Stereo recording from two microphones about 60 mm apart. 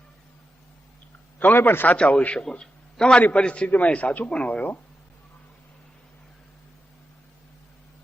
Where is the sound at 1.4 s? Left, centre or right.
Left.